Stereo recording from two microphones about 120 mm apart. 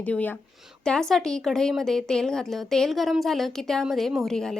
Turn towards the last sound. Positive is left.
turn(degrees=5)  # may be behind; listen again after turning